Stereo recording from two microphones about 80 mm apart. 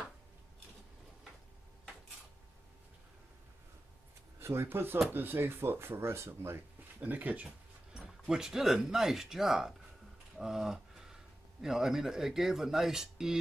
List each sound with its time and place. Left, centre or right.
4.4 s speech: right
7.0 s speech: right
7.9 s speech: centre
10.3 s a sound: centre
11.6 s speech: centre